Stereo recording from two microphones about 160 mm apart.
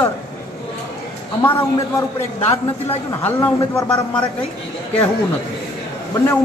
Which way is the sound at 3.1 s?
15° left (ahead or behind).